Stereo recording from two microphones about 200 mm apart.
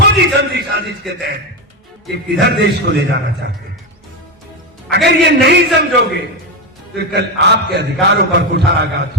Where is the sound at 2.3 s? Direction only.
60° right (ahead or behind).